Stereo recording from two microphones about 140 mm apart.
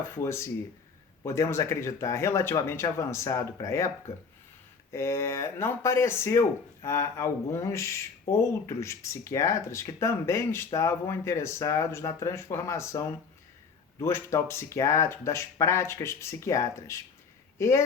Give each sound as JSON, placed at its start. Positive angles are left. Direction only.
{"t": 0.2, "sound": "speech", "side_deg": 20}
{"t": 14.0, "sound": "speech", "side_deg": 20}